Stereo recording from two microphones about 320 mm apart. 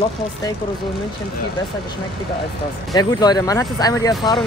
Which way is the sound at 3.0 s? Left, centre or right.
Centre.